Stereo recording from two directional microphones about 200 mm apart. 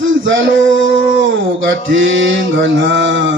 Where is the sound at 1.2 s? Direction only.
70° right (ahead or behind).